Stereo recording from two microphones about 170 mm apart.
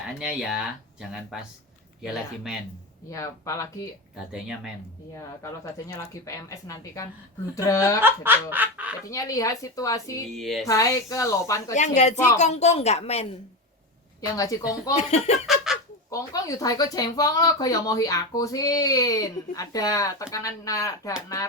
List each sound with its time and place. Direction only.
0.2 s speech: 5° right (ahead or behind)
2.0 s speech: centre (ahead or behind)
3.1 s speech: 20° left (ahead or behind)
4.2 s speech: 5° right (ahead or behind)
5.9 s speech: 20° left (ahead or behind)
8.0 s snicker: 10° right (ahead or behind)
9.0 s speech: 20° left (ahead or behind)
10.3 s speech: centre (ahead or behind)
10.7 s speech: 20° left (ahead or behind)
12.4 s a woman's voice: 40° left (ahead or behind)
14.2 s speech: 20° left (ahead or behind)
14.9 s a woman's voice: 40° left (ahead or behind)
15.4 s a sound: centre (ahead or behind)
16.0 s speech: 20° left (ahead or behind)